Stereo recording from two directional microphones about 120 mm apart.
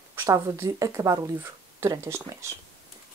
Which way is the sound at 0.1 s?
20° right (ahead or behind).